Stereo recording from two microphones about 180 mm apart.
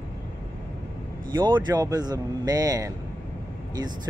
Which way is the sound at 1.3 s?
25° right (ahead or behind).